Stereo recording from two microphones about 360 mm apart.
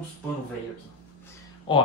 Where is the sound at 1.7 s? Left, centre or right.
Centre.